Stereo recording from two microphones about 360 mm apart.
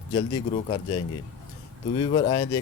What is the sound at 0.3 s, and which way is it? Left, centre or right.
Speech, centre.